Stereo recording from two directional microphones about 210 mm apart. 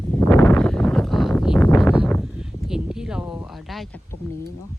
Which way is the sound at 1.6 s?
10° left (ahead or behind).